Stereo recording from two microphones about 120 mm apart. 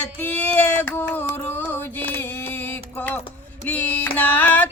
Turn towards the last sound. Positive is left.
turn(degrees=15)  # may be behind; listen again after turning